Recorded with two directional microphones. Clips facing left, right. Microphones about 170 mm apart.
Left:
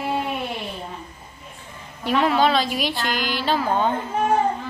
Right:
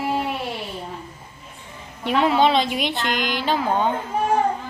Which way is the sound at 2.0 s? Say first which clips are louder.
Right 1 dB; 25° right (ahead or behind).